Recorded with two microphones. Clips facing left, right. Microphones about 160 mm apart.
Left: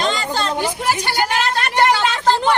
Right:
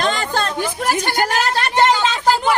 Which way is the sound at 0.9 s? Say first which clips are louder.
Right 2 dB; 50° right (ahead or behind).